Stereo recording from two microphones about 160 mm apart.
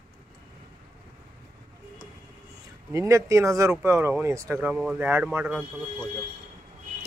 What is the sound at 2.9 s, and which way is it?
Speech, 20° right (ahead or behind).